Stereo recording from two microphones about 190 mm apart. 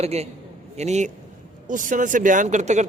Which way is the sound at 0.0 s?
35° right (ahead or behind).